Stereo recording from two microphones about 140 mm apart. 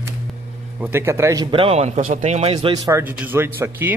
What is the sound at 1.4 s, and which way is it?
Speech, 40° right (ahead or behind).